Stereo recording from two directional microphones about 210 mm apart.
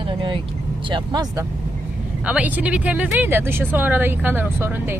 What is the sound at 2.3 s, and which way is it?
Speech, 5° right (ahead or behind).